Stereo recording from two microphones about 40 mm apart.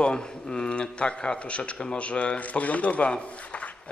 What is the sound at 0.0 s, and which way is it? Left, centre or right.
A man's voice, centre.